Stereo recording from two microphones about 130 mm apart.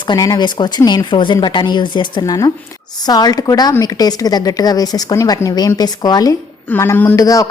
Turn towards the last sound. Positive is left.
turn(degrees=25)  # may be behind; listen again after turning